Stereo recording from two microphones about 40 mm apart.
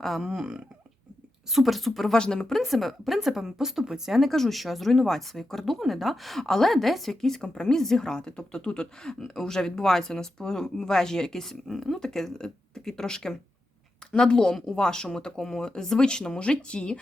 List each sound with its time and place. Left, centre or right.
0.2 s speech: centre
1.5 s speech: centre
2.1 s a woman's voice: centre
2.6 s speech: centre
3.2 s speech: centre
4.2 s a woman's voice: centre
14.0 s a sound: centre
14.8 s a woman's voice: centre